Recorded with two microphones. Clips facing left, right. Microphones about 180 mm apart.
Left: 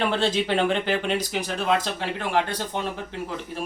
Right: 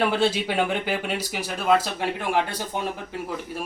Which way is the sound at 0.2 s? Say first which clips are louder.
Even; 10° right (ahead or behind).